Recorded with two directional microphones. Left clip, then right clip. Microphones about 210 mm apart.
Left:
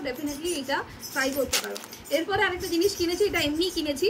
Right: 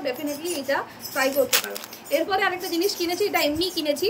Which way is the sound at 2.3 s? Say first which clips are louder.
Right 2 dB; 20° left (ahead or behind).